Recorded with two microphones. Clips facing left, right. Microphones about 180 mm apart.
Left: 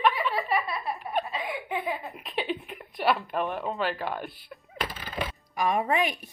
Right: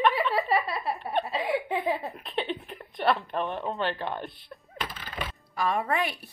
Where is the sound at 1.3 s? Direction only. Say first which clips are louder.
Right 4 dB; 35° right (ahead or behind).